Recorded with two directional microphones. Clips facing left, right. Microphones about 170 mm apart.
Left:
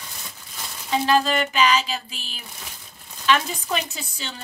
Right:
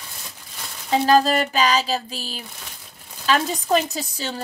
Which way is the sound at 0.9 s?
40° right (ahead or behind).